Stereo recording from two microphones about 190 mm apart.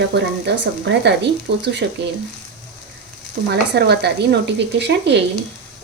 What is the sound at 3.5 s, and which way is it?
Speech, 60° right (ahead or behind).